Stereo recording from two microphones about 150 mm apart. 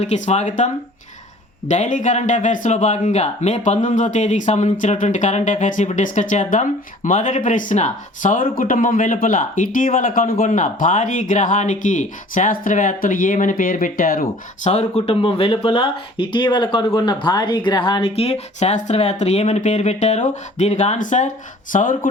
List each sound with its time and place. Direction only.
0.0 s a man's voice: 50° left (ahead or behind); by 14.7 s 65° left (ahead or behind)
14.7 s speech: 45° left (ahead or behind)